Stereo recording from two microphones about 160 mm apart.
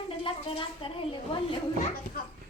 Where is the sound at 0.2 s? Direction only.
35° left (ahead or behind).